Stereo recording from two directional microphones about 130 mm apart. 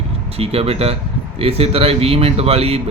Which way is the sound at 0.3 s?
50° right (ahead or behind).